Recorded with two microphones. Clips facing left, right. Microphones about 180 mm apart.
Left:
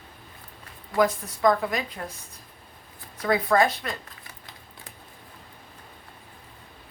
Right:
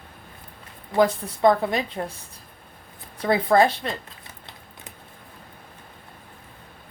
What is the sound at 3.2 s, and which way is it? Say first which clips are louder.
Speech: right 3 dB; 30° right (ahead or behind).